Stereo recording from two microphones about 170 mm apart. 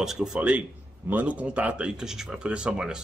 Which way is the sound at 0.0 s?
5° right (ahead or behind).